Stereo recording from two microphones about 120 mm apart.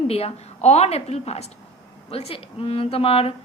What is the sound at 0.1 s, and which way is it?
A woman's voice, 55° left (ahead or behind).